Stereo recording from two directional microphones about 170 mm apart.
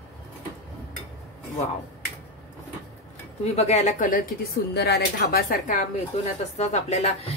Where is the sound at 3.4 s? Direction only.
40° left (ahead or behind).